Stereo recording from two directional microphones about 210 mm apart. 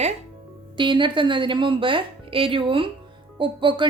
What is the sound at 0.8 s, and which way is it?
A woman's voice, 20° right (ahead or behind).